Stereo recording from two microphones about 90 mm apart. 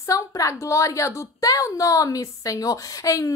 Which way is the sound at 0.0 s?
40° left (ahead or behind).